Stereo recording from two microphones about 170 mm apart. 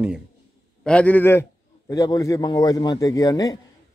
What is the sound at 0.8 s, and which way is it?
A man's voice, 10° left (ahead or behind).